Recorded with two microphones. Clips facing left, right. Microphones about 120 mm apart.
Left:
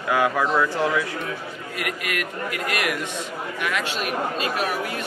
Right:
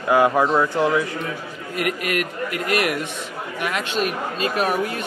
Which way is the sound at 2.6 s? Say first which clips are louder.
Right 5 dB; 30° right (ahead or behind).